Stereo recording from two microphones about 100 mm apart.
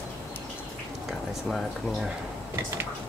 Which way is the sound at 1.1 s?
Centre (ahead or behind).